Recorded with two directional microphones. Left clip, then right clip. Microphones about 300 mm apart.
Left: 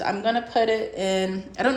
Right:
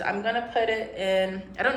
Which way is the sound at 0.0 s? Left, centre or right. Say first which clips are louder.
Left 3 dB; centre.